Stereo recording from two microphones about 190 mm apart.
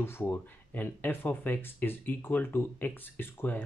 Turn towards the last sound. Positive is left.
turn(degrees=10)  # may be behind; listen again after turning